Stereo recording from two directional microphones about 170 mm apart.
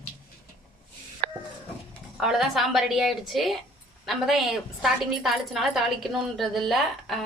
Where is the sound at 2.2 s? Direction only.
Centre (ahead or behind).